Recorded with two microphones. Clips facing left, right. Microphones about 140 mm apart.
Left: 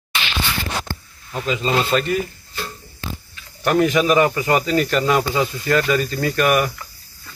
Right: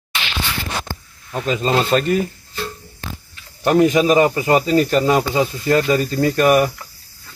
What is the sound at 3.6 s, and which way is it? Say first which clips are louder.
Speech: right 3 dB; 30° right (ahead or behind).